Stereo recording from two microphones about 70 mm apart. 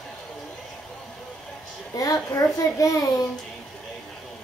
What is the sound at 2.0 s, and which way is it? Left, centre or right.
A child's voice, left.